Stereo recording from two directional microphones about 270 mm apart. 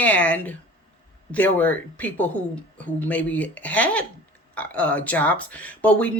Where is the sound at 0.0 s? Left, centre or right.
Centre.